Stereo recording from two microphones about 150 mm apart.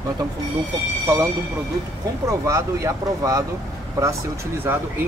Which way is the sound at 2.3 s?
20° right (ahead or behind).